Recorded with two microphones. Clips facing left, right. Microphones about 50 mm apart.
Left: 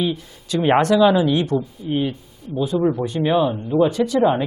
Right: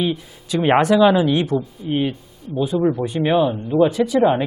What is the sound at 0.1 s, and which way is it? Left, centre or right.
Speech, centre.